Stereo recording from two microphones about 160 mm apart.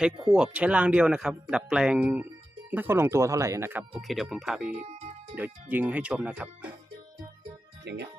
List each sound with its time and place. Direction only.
0.3 s speech: 5° right (ahead or behind)
3.9 s speech: centre (ahead or behind)
7.9 s speech: 90° right